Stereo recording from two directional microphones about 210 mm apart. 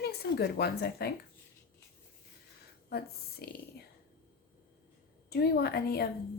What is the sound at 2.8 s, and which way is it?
Speech, 50° left (ahead or behind).